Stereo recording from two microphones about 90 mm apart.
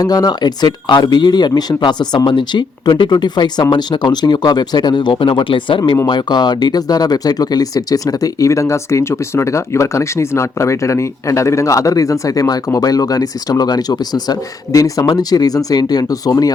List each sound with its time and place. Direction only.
0.0 s speech: 45° left (ahead or behind); by 6.0 s 70° left (ahead or behind)
6.1 s speech: 55° left (ahead or behind)